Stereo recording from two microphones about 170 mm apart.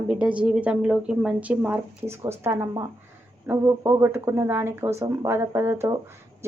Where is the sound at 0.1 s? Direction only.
5° right (ahead or behind).